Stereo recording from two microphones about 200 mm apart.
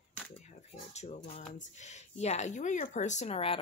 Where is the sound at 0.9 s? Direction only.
35° left (ahead or behind).